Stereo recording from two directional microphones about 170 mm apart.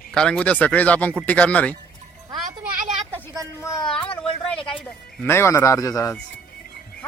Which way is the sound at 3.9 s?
30° left (ahead or behind).